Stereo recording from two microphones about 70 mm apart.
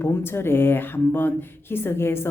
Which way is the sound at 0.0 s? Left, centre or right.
Left.